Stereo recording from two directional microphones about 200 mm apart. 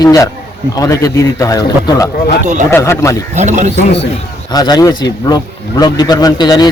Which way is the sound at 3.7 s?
60° left (ahead or behind).